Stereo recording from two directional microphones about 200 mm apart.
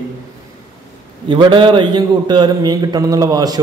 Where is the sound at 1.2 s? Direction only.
25° right (ahead or behind).